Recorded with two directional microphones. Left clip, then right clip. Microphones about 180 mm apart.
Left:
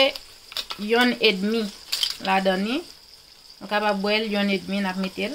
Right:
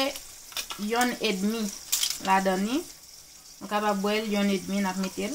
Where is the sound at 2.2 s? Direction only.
15° left (ahead or behind).